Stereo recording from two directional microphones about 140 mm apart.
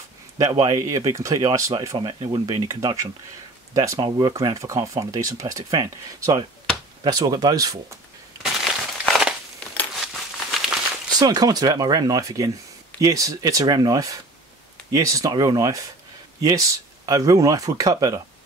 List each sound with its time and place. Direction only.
0.4 s speech: 30° right (ahead or behind)
8.4 s crushing: centre (ahead or behind)
11.1 s speech: 30° right (ahead or behind)